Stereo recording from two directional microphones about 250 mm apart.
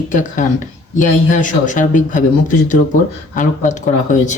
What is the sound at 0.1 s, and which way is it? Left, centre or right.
Speech, left.